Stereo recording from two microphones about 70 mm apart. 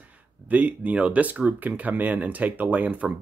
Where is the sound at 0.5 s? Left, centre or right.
Centre.